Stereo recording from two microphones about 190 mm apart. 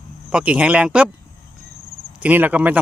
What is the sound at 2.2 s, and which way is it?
Speech, 10° right (ahead or behind).